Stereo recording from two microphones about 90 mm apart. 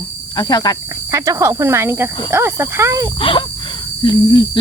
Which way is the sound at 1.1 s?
35° right (ahead or behind).